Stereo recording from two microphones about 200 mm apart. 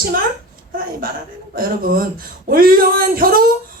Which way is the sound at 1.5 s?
45° right (ahead or behind).